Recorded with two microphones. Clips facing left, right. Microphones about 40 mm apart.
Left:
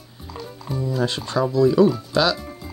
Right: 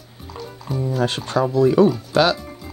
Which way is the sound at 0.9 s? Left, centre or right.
Right.